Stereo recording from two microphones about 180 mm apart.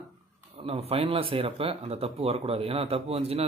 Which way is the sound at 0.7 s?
35° right (ahead or behind).